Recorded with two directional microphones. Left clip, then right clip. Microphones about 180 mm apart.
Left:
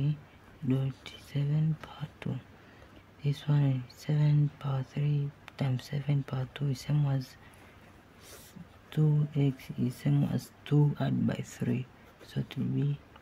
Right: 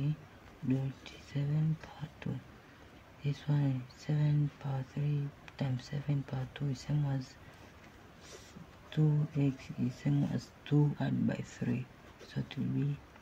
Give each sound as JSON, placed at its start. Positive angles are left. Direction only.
{"t": 0.7, "sound": "speech", "side_deg": 35}
{"t": 8.9, "sound": "speech", "side_deg": 35}